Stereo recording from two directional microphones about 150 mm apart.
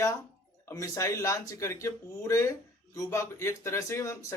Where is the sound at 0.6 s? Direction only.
20° left (ahead or behind).